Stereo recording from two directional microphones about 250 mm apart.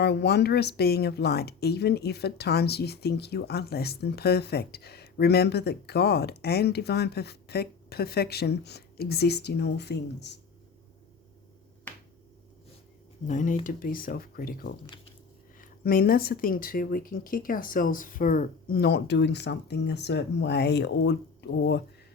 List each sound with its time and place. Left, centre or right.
0.0 s speech: left
11.9 s finger snapping: centre
13.2 s speech: left